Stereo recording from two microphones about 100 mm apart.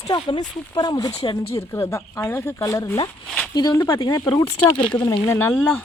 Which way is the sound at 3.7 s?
25° left (ahead or behind).